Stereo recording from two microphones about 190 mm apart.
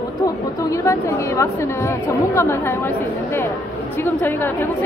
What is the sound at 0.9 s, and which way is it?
A woman's voice, 15° left (ahead or behind).